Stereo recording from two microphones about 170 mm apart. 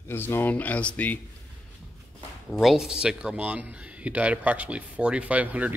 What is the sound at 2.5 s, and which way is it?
Speech, centre (ahead or behind).